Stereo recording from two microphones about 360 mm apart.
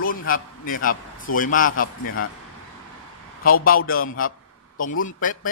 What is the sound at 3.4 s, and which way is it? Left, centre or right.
A man's voice, left.